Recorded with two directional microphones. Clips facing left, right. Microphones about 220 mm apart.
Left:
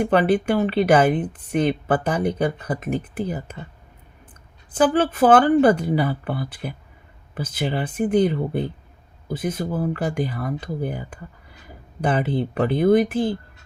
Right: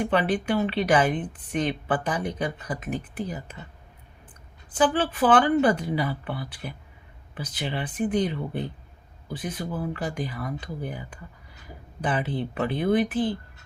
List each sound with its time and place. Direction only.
0.1 s speech: 45° left (ahead or behind)
4.8 s speech: 45° left (ahead or behind)